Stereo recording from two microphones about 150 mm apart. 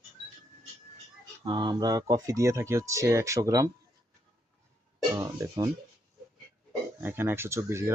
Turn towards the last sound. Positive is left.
turn(degrees=-15)  # may be behind; listen again after turning